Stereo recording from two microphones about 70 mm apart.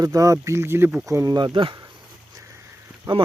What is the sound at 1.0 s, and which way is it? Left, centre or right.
Speech, right.